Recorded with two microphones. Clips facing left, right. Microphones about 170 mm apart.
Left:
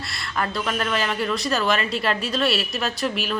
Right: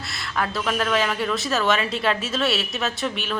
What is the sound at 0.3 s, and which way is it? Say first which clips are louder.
A woman's voice: right 1 dB; centre (ahead or behind).